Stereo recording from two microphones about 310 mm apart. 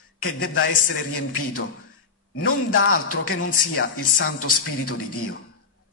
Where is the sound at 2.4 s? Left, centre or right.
Left.